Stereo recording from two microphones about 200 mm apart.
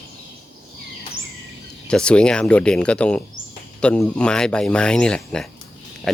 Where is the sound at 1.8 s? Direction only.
5° left (ahead or behind).